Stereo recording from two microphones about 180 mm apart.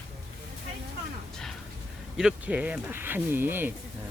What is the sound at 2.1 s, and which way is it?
Speech, 5° right (ahead or behind).